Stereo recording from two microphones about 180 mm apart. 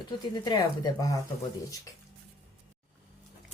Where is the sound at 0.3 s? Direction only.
25° left (ahead or behind).